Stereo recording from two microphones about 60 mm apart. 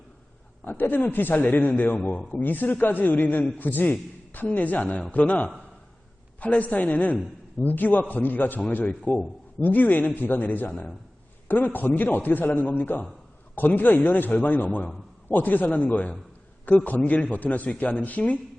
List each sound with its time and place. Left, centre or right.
0.6 s a man's voice: left
2.0 s a man's voice: centre
2.3 s a man's voice: left